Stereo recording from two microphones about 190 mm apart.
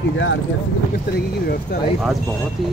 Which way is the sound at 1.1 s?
55° left (ahead or behind).